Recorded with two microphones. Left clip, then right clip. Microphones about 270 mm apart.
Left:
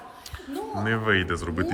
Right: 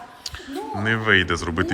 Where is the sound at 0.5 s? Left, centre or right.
Centre.